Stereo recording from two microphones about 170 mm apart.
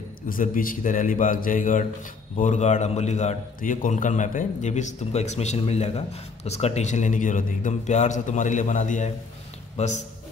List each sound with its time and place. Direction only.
0.3 s a man's voice: 55° left (ahead or behind)